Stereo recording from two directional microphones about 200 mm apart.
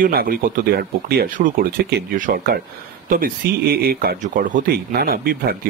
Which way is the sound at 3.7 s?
50° right (ahead or behind).